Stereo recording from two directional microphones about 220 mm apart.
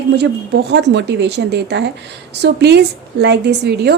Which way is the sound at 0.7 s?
50° right (ahead or behind).